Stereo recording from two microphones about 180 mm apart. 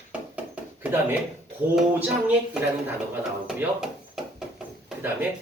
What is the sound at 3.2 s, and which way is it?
Speech, 5° right (ahead or behind).